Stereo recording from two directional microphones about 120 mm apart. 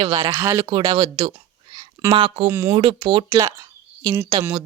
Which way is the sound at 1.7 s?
30° right (ahead or behind).